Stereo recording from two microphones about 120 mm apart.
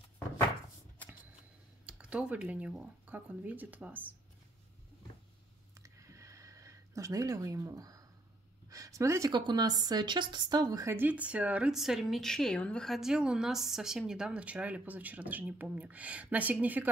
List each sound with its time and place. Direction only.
1.9 s speech: 10° right (ahead or behind)
5.8 s a sound: 25° right (ahead or behind)
9.3 s a woman's voice: 35° right (ahead or behind)
11.0 s speech: 15° right (ahead or behind)